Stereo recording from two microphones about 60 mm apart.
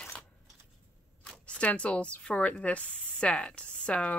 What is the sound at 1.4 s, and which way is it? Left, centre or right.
Speech, centre.